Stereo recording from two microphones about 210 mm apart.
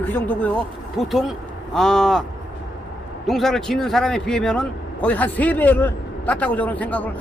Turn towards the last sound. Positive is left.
turn(degrees=5)  # may be behind; listen again after turning